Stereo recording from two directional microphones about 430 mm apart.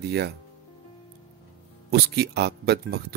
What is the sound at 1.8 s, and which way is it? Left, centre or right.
Speech, right.